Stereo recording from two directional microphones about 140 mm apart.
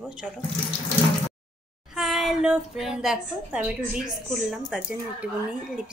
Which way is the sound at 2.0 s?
Centre (ahead or behind).